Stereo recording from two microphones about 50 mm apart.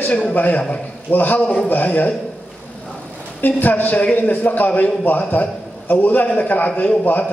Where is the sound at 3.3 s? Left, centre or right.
Left.